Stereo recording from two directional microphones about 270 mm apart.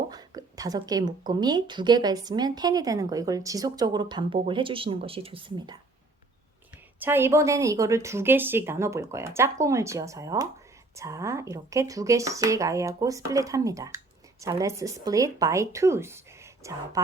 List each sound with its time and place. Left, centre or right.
0.1 s a woman's voice: centre
7.0 s a woman's voice: centre